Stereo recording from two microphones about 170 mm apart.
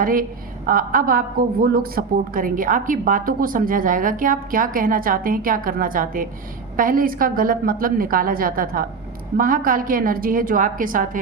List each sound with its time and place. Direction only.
0.0 s a woman's voice: 55° right (ahead or behind)